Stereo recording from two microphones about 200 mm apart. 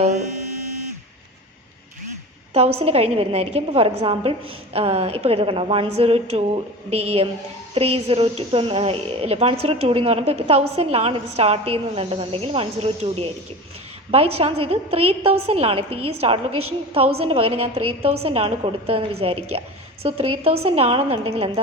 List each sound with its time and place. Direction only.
2.5 s a woman's voice: 30° right (ahead or behind)
14.3 s a woman's voice: 30° right (ahead or behind)
16.5 s a woman's voice: 90° right
17.2 s a woman's voice: 30° right (ahead or behind)